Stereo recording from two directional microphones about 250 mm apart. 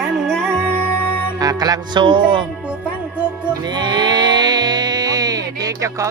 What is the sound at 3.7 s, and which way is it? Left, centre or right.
Music, centre.